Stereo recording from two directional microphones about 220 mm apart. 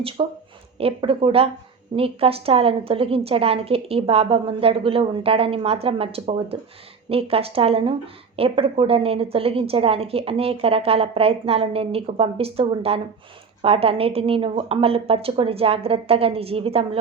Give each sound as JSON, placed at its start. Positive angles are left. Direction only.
{"t": 0.2, "sound": "speech", "side_deg": -25}